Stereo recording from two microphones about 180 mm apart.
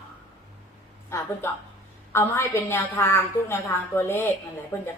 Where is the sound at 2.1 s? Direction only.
15° left (ahead or behind).